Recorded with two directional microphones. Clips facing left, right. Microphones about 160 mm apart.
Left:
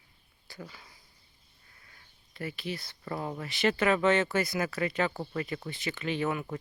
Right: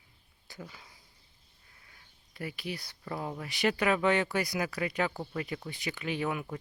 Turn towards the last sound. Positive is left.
turn(degrees=-5)  # may be behind; listen again after turning